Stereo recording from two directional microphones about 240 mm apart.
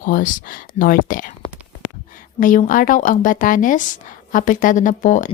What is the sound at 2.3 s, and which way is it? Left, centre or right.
A woman's voice, left.